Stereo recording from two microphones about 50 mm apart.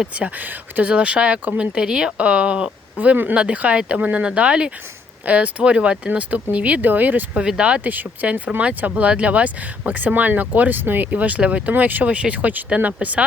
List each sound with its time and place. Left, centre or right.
0.2 s speech: right; by 2.1 s centre
2.1 s speech: right
7.4 s speech: centre; by 12.0 s right
12.0 s speech: right